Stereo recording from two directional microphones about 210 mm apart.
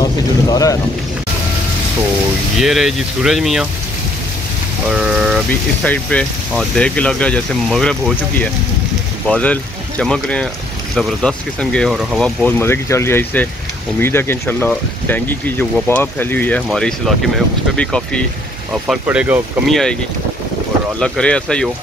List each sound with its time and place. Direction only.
0.0 s rain: 15° left (ahead or behind)
2.6 s speech: centre (ahead or behind)
4.8 s speech: 5° right (ahead or behind)
21.0 s speech: 5° left (ahead or behind)